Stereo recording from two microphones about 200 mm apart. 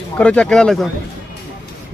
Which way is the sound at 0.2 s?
5° left (ahead or behind).